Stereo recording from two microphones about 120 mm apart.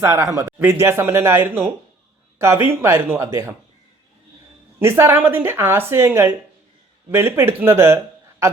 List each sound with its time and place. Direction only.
0.0 s speech: 25° right (ahead or behind)
4.8 s speech: 20° right (ahead or behind)